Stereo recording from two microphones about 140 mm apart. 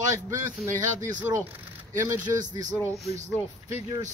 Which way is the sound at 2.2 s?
65° right (ahead or behind).